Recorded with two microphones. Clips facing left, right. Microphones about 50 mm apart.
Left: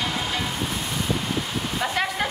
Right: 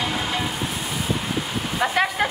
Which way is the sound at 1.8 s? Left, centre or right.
Centre.